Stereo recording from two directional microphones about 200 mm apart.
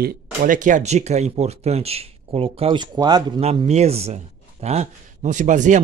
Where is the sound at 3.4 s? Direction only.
30° right (ahead or behind).